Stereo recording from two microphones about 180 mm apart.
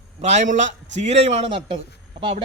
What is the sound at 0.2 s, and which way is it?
Speech, 40° right (ahead or behind).